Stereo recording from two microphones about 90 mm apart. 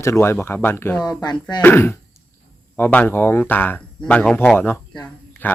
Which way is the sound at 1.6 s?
25° left (ahead or behind).